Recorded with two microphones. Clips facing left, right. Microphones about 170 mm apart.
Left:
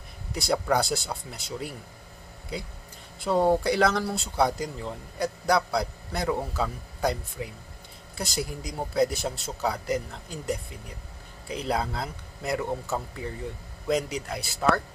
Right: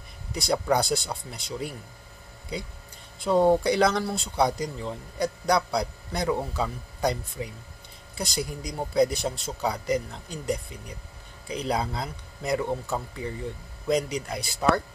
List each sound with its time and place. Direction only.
0.3 s speech: 5° left (ahead or behind)
3.3 s speech: 5° left (ahead or behind)